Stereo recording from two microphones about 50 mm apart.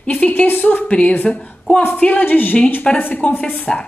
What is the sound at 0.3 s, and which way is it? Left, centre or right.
Speech, left.